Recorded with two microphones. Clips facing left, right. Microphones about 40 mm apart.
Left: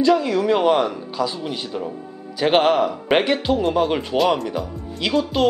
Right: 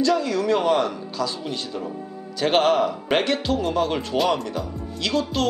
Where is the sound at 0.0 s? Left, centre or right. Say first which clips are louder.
Left 4 dB; centre.